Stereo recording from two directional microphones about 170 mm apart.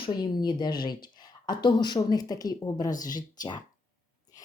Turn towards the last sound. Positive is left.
turn(degrees=20)  # may be behind; listen again after turning